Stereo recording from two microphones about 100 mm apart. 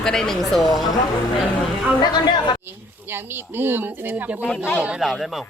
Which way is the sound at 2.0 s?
45° left (ahead or behind).